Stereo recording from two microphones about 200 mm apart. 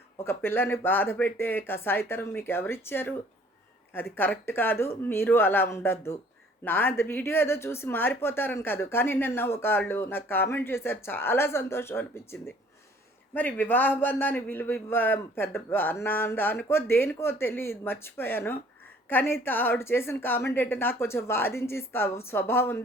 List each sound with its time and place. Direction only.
0.3 s speech: 10° left (ahead or behind)